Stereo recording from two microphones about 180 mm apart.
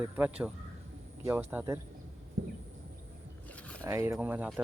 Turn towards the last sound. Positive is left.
turn(degrees=-10)  # may be behind; listen again after turning